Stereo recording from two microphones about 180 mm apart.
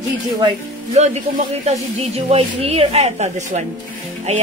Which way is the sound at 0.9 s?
35° right (ahead or behind).